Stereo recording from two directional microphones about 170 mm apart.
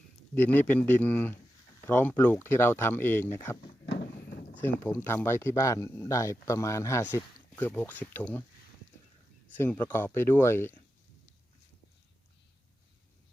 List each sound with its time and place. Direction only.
0.3 s speech: 10° left (ahead or behind)
3.8 s a sound: 70° left (ahead or behind)
4.5 s speech: 10° left (ahead or behind)
9.6 s speech: 10° left (ahead or behind)